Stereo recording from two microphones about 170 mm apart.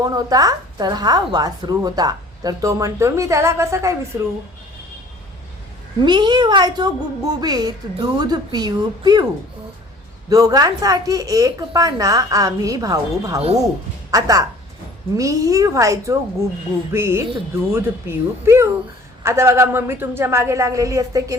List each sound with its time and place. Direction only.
0.0 s a woman's voice: 20° right (ahead or behind)
6.0 s a woman's voice: 25° right (ahead or behind)
10.2 s a woman's voice: 20° right (ahead or behind)